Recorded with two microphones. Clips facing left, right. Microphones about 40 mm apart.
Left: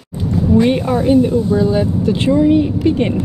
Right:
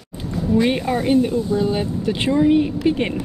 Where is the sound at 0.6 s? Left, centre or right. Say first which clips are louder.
Left 5 dB; centre.